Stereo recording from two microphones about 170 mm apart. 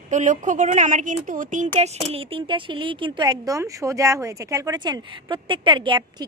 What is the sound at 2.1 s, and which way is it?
Speech, 30° right (ahead or behind).